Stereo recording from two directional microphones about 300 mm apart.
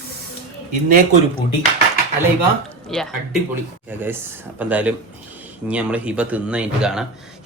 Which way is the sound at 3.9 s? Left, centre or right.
Centre.